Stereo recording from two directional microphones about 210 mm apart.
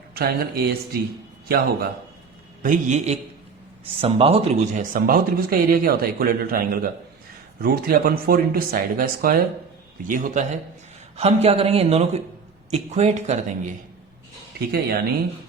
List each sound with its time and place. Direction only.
0.1 s a sound: 45° right (ahead or behind)
1.5 s speech: 45° right (ahead or behind)
2.6 s a man's voice: 35° right (ahead or behind)
14.7 s speech: 45° right (ahead or behind)